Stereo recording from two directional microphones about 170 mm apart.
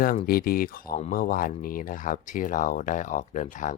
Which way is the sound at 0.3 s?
60° left (ahead or behind).